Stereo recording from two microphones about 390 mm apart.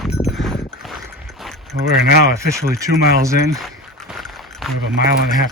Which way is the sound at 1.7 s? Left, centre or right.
Right.